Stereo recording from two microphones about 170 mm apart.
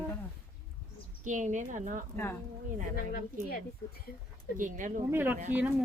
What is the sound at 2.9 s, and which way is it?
Speech, 60° left (ahead or behind).